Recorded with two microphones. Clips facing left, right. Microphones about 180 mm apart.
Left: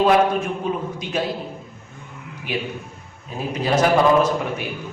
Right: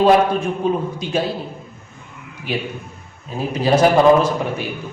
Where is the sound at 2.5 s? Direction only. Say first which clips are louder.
Right 2 dB; 30° right (ahead or behind).